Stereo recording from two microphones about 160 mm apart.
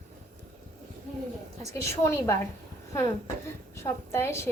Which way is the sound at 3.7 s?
15° left (ahead or behind).